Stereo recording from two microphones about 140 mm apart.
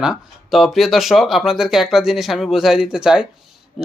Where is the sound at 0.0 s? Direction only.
Centre (ahead or behind).